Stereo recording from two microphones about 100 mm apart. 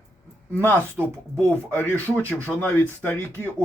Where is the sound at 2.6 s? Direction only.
20° left (ahead or behind).